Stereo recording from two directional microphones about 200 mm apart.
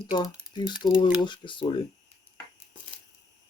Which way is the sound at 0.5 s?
25° left (ahead or behind).